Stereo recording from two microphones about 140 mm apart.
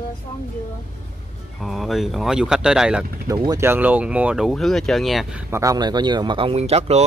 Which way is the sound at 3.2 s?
25° right (ahead or behind).